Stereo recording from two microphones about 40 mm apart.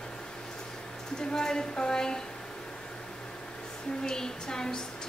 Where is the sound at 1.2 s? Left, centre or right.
Centre.